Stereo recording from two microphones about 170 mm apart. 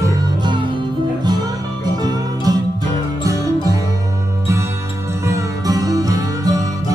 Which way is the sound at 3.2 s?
20° right (ahead or behind).